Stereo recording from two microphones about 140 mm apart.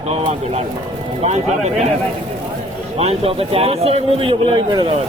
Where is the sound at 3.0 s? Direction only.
45° right (ahead or behind).